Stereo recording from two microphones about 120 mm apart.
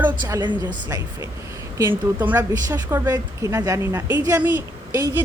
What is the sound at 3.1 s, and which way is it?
A woman's voice, 30° right (ahead or behind).